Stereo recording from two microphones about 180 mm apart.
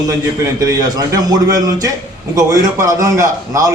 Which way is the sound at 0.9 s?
20° right (ahead or behind).